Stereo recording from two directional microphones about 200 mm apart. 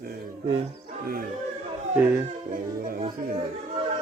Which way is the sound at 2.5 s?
40° right (ahead or behind).